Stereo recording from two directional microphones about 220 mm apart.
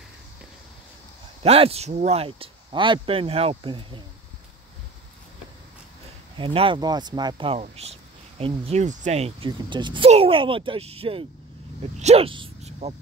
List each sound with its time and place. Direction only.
1.4 s speech: 25° right (ahead or behind)
6.3 s speech: 25° right (ahead or behind)